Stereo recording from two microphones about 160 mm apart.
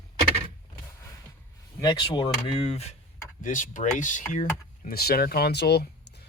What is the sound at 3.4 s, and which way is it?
Speech, 55° left (ahead or behind).